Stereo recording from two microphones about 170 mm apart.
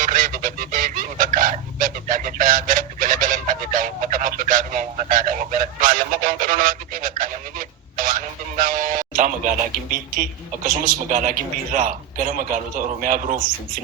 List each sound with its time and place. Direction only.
0.0 s a sound: 50° right (ahead or behind)
7.9 s radio: 55° right (ahead or behind)
12.7 s speech: 50° right (ahead or behind)